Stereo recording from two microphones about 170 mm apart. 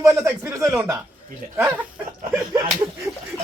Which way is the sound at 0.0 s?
15° right (ahead or behind).